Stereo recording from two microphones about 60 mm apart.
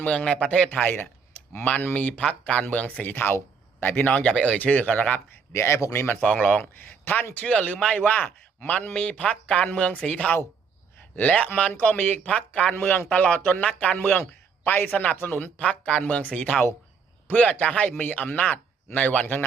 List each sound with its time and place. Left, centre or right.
0.0 s a man's voice: left
4.1 s a man's voice: centre
4.6 s a man's voice: left
5.3 s a man's voice: left
6.2 s a man's voice: centre
6.6 s a man's voice: left
7.3 s a man's voice: centre
11.2 s a man's voice: left
12.7 s a man's voice: left
13.1 s a man's voice: left
15.5 s a man's voice: centre